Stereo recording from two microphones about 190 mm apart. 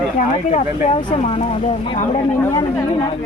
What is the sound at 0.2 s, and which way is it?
Speech, 35° left (ahead or behind).